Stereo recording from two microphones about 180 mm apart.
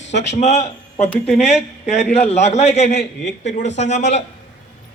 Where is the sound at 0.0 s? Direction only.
75° left (ahead or behind).